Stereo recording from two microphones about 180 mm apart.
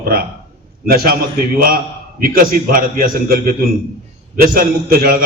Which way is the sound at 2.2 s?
50° right (ahead or behind).